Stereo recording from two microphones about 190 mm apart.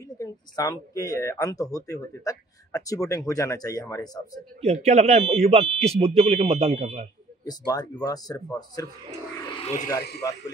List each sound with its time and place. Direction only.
0.2 s speech: 20° left (ahead or behind)
4.6 s speech: 35° right (ahead or behind)
7.4 s speech: 20° left (ahead or behind)
9.5 s a sound: 30° left (ahead or behind)
10.2 s speech: 20° left (ahead or behind)